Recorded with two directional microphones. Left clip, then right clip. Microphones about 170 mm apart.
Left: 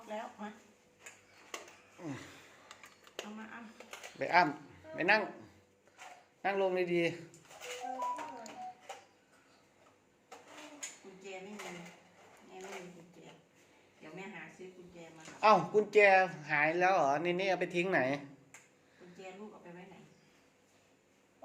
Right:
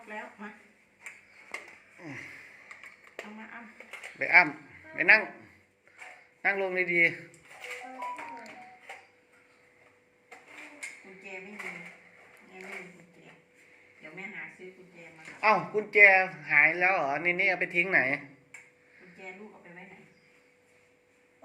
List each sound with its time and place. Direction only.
2.0 s a sound: 25° left (ahead or behind)
4.2 s a man's voice: 15° left (ahead or behind)
6.4 s speech: 10° left (ahead or behind)
7.9 s music: 5° left (ahead or behind)
15.4 s speech: 25° left (ahead or behind)